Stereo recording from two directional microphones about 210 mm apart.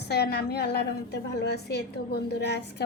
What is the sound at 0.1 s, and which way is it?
A woman's voice, 50° left (ahead or behind).